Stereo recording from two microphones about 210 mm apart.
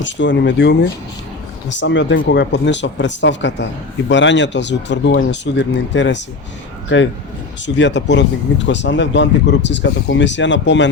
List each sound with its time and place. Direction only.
0.0 s speech: 60° left (ahead or behind)
1.8 s speech: 60° left (ahead or behind)